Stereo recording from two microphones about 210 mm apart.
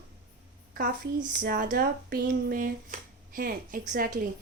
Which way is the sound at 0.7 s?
40° right (ahead or behind).